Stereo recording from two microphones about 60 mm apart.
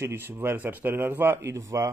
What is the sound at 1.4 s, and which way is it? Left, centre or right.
Speech, right.